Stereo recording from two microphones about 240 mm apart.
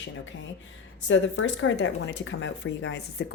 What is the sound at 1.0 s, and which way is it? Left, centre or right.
Speech, left.